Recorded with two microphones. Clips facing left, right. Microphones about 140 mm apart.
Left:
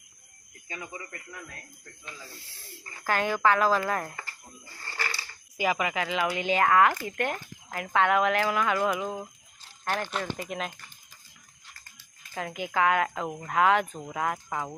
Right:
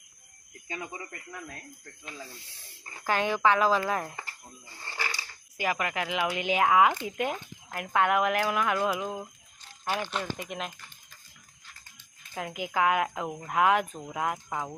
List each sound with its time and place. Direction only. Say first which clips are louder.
0.7 s speech: right 2 dB; 25° right (ahead or behind)
3.1 s speech: even; 25° right (ahead or behind)
3.3 s speech: even; centre (ahead or behind)
4.9 s a sound: even; 15° right (ahead or behind)
5.5 s speech: left 2 dB; 5° left (ahead or behind)
11.9 s speech: left 1 dB; centre (ahead or behind)